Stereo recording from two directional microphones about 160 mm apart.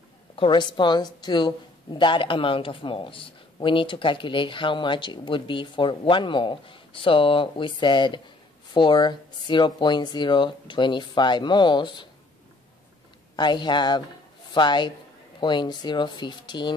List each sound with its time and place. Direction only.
0.4 s speech: 30° left (ahead or behind)
13.4 s a man's voice: 30° left (ahead or behind)